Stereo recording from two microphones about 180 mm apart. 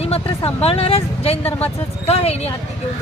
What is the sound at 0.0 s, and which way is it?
A woman's voice, 35° left (ahead or behind).